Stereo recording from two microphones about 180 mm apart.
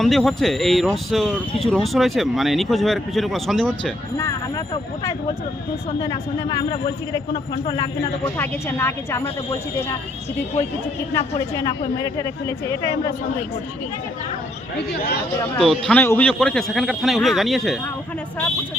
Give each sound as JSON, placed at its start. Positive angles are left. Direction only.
{"t": 0.0, "sound": "speech", "side_deg": 0}
{"t": 4.2, "sound": "speech", "side_deg": 20}
{"t": 8.4, "sound": "speech", "side_deg": 10}
{"t": 11.6, "sound": "speech", "side_deg": 20}
{"t": 15.5, "sound": "speech", "side_deg": 5}